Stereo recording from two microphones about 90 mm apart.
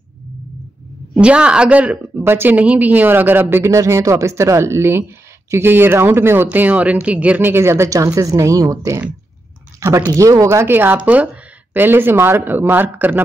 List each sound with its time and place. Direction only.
1.2 s a woman's voice: 10° right (ahead or behind)
2.1 s speech: 25° right (ahead or behind)